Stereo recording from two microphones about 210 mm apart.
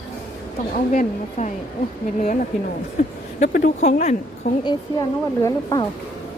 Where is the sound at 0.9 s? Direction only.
35° left (ahead or behind).